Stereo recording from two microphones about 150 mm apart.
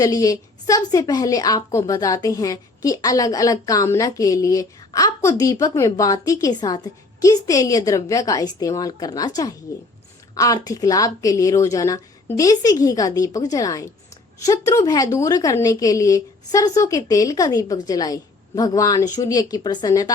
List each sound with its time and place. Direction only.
0.0 s a woman's voice: 25° left (ahead or behind)